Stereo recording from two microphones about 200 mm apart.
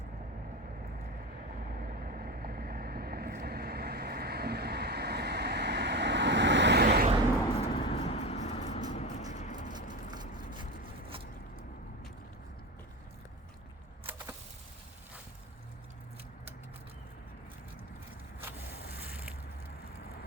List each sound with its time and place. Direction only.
2.1 s vehicle: 45° right (ahead or behind); by 6.8 s 60° right (ahead or behind)
6.8 s vehicle: 45° right (ahead or behind)
7.6 s vehicle: 25° left (ahead or behind)